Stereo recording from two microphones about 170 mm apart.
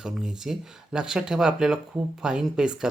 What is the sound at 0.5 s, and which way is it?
Speech, 5° right (ahead or behind).